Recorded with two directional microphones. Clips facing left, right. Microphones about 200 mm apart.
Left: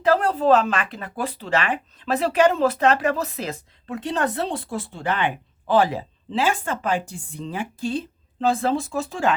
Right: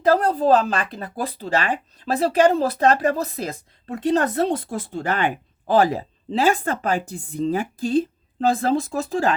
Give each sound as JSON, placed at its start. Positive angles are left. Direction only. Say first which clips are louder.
{"t": 0.0, "sound": "speech", "louder": "right 1 dB", "side_deg": -40}